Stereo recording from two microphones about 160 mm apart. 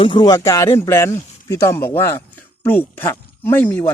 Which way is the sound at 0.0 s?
30° left (ahead or behind).